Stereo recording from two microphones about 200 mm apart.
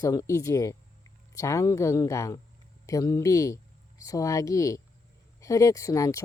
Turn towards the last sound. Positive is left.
turn(degrees=15)  # may be behind; listen again after turning